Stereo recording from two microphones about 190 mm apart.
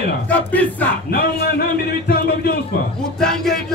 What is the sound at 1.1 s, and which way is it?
A man's voice, 55° left (ahead or behind).